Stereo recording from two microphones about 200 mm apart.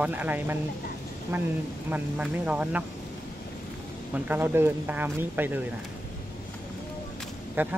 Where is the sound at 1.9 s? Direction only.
5° right (ahead or behind).